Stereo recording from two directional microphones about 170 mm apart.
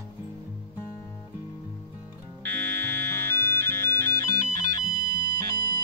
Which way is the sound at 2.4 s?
10° left (ahead or behind).